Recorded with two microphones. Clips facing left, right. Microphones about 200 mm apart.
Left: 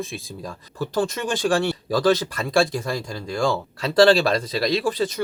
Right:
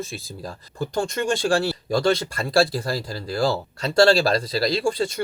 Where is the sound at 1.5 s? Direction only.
30° right (ahead or behind).